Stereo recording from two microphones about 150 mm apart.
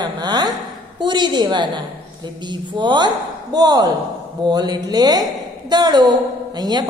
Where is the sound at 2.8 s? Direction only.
30° right (ahead or behind).